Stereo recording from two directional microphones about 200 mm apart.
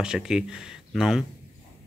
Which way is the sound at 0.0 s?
5° right (ahead or behind).